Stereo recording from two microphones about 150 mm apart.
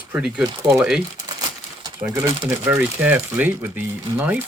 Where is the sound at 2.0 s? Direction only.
15° right (ahead or behind).